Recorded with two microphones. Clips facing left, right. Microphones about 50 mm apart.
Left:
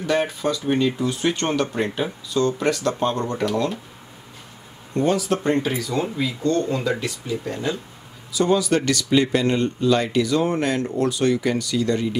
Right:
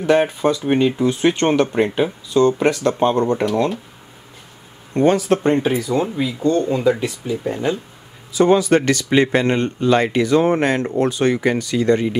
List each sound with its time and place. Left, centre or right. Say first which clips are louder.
0.0 s speech: right 6 dB; right
4.9 s speech: right 5 dB; right